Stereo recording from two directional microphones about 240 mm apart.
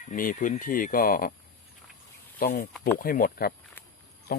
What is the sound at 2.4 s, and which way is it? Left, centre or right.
Speech, left.